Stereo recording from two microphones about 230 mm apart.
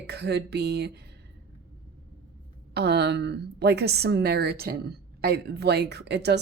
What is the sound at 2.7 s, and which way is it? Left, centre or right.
A woman's voice, right.